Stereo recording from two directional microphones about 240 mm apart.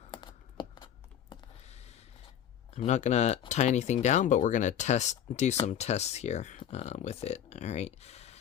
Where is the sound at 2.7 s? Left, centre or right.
Left.